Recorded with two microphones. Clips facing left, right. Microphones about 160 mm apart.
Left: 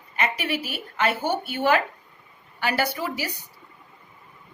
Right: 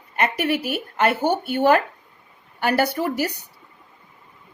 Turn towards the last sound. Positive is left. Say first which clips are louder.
# right 5 dB
turn(degrees=-50)  # may be behind; listen again after turning